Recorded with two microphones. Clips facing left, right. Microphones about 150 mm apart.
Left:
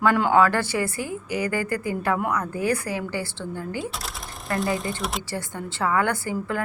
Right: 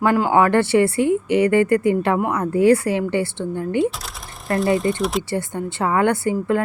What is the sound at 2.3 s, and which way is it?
Speech, 30° right (ahead or behind).